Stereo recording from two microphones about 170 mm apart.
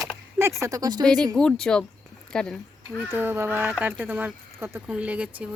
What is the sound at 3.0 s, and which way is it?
Speech, 10° right (ahead or behind).